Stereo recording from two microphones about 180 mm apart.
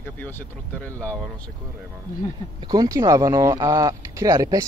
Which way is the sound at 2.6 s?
20° right (ahead or behind).